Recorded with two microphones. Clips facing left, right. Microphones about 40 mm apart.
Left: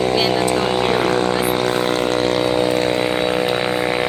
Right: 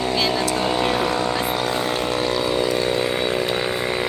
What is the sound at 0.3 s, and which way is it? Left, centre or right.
Vehicle, left.